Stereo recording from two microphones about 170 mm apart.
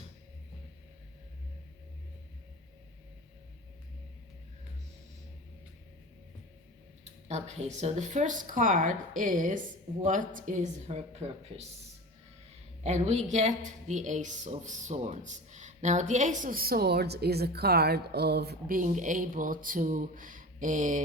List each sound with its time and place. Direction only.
7.0 s a woman's voice: 40° right (ahead or behind)
12.8 s a woman's voice: 40° right (ahead or behind); by 18.8 s 70° right (ahead or behind)
18.8 s a woman's voice: 50° right (ahead or behind)